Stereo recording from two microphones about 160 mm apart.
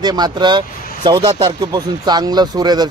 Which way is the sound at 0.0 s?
25° right (ahead or behind).